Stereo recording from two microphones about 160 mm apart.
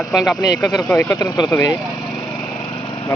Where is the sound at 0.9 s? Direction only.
15° left (ahead or behind).